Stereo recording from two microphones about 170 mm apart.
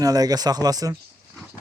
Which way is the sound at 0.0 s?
20° right (ahead or behind).